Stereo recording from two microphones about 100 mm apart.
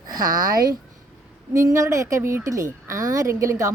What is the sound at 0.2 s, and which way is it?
A woman's voice, 40° right (ahead or behind).